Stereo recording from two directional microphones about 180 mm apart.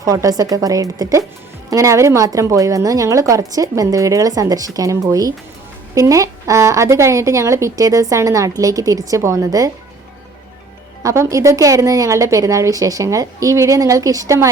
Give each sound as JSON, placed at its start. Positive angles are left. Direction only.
{"t": 0.0, "sound": "a woman's voice", "side_deg": -20}
{"t": 11.0, "sound": "a woman's voice", "side_deg": -15}